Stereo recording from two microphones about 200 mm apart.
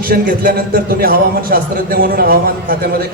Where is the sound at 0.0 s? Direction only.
45° right (ahead or behind).